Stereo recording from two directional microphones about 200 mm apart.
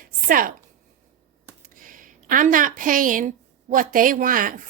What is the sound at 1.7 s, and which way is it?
A woman's voice, 45° right (ahead or behind).